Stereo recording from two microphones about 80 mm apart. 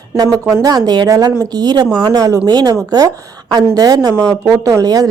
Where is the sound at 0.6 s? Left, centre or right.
Right.